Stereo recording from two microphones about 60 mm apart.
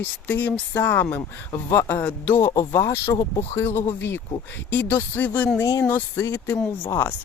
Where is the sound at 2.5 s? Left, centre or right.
Left.